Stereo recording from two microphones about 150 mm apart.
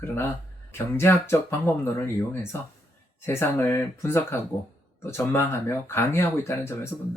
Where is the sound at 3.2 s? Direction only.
15° left (ahead or behind).